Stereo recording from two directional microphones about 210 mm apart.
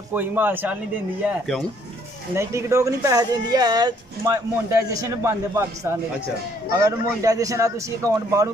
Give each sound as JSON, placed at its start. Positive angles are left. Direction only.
{"t": 0.1, "sound": "speech", "side_deg": -10}
{"t": 1.2, "sound": "speech", "side_deg": 0}
{"t": 2.3, "sound": "speech", "side_deg": -15}